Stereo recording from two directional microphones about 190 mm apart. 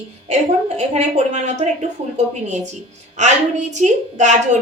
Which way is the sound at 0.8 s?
35° right (ahead or behind).